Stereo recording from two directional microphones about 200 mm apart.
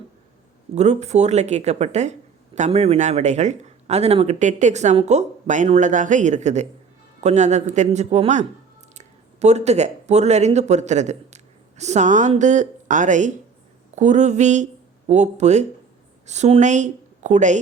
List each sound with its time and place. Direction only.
0.8 s a woman's voice: 35° right (ahead or behind)